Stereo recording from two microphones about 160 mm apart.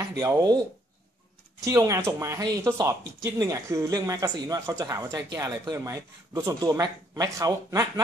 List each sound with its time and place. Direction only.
0.2 s speech: 20° right (ahead or behind)
1.6 s speech: 20° right (ahead or behind)